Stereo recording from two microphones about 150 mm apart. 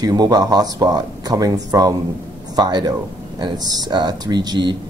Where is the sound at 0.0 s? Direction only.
25° right (ahead or behind).